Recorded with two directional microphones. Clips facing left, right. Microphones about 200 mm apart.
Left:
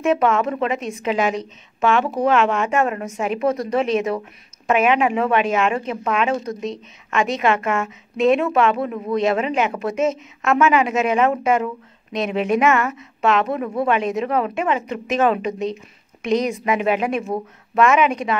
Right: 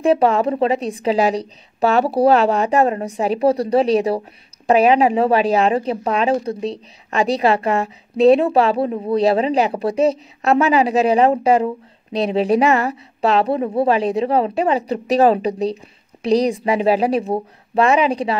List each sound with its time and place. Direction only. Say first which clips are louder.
0.0 s speech: right 3 dB; 35° right (ahead or behind)